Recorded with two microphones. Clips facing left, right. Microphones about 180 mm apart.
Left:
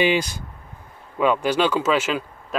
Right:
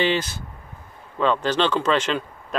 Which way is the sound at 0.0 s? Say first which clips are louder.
Left 2 dB; 10° left (ahead or behind).